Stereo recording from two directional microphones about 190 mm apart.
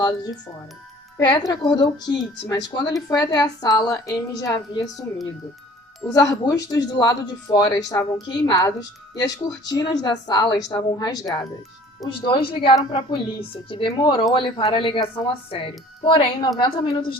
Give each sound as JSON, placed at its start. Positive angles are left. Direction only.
{"t": 1.2, "sound": "speech", "side_deg": 25}
{"t": 6.1, "sound": "speech", "side_deg": 20}